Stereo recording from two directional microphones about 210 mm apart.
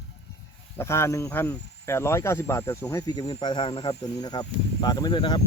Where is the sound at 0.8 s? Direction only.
10° left (ahead or behind).